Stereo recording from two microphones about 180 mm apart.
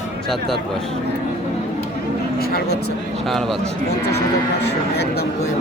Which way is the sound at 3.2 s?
Centre (ahead or behind).